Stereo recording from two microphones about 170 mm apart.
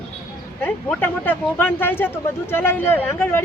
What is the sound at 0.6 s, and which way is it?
Speech, 10° left (ahead or behind).